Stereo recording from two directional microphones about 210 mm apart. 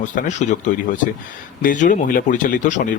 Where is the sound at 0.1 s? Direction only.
35° left (ahead or behind).